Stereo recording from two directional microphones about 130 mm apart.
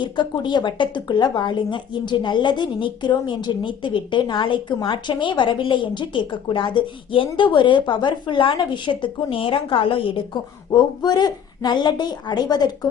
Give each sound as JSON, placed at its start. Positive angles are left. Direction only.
{"t": 0.0, "sound": "speech", "side_deg": 35}
{"t": 10.7, "sound": "speech", "side_deg": 30}